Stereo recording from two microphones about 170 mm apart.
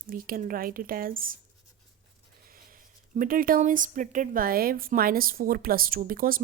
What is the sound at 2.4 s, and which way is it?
Speech, 55° right (ahead or behind).